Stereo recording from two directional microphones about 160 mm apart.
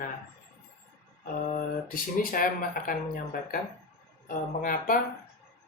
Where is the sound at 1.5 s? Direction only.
60° left (ahead or behind).